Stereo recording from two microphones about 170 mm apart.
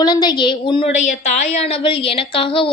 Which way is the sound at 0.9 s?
45° left (ahead or behind).